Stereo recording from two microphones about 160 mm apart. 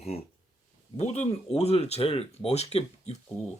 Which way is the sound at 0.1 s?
45° left (ahead or behind).